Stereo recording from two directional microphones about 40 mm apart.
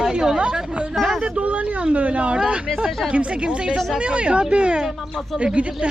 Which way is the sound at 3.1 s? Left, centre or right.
Right.